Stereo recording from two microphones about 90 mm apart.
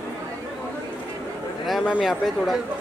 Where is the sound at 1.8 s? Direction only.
10° right (ahead or behind).